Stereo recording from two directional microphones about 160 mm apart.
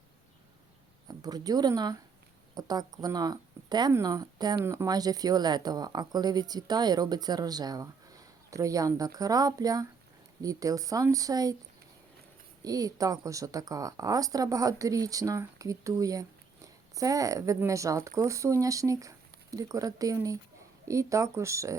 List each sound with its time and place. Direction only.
1.0 s speech: 25° right (ahead or behind)
12.6 s speech: 20° right (ahead or behind)